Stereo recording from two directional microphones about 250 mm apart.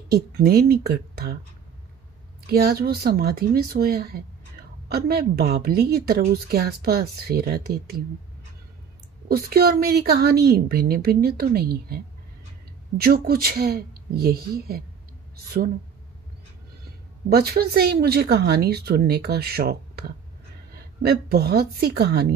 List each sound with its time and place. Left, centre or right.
0.1 s a woman's voice: right
2.4 s a woman's voice: right
9.3 s a woman's voice: right
17.3 s a woman's voice: right